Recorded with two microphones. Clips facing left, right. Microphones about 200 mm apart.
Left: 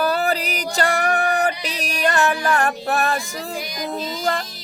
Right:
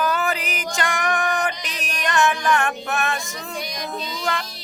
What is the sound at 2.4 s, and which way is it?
Female singing, 35° left (ahead or behind).